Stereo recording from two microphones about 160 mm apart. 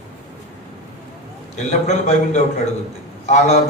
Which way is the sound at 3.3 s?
45° left (ahead or behind).